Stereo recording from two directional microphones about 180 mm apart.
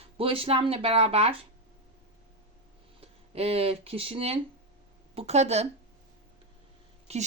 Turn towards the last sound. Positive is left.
turn(degrees=-35)  # may be behind; listen again after turning